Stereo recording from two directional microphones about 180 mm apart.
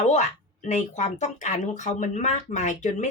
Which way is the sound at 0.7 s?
40° left (ahead or behind).